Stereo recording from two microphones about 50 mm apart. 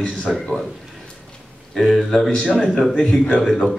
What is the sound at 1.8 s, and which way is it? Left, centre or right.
Speech, centre.